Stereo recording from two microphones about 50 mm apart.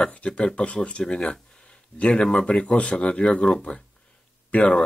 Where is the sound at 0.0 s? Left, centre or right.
Left.